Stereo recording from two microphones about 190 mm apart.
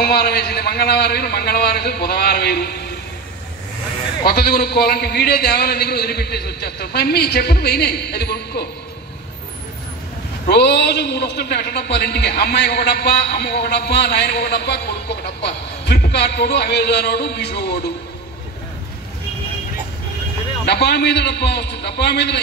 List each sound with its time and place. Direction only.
0.0 s a man's voice: 55° left (ahead or behind)
4.3 s a man's voice: 50° left (ahead or behind)
10.5 s a man's voice: 60° left (ahead or behind)
20.6 s a man's voice: 60° left (ahead or behind)